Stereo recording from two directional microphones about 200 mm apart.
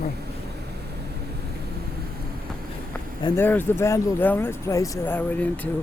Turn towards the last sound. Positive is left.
turn(degrees=10)  # may be behind; listen again after turning